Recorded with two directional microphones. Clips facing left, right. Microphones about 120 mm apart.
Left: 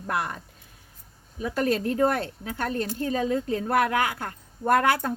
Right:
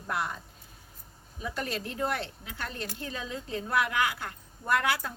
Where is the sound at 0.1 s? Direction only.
60° left (ahead or behind).